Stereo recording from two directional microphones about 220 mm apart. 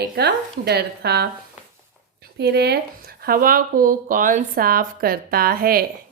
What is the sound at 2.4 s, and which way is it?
A woman's voice, 45° right (ahead or behind).